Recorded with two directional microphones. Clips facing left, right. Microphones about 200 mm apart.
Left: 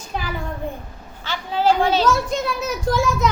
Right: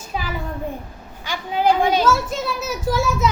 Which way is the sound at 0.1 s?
5° right (ahead or behind).